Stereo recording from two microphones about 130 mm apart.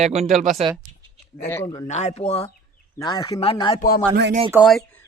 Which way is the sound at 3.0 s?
35° left (ahead or behind).